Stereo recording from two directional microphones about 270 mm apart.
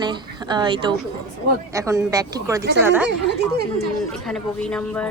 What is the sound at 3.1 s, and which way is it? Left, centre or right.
Speech, right.